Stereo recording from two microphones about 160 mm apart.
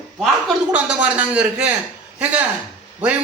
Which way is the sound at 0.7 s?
10° right (ahead or behind).